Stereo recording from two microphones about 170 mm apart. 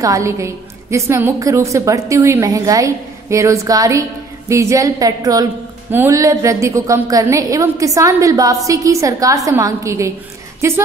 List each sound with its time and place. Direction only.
0.0 s a woman's voice: 20° right (ahead or behind)